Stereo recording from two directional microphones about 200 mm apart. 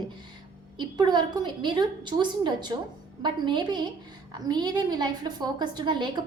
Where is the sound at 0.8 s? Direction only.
20° right (ahead or behind).